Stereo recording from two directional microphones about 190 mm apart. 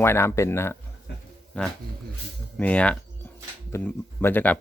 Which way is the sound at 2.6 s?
5° left (ahead or behind).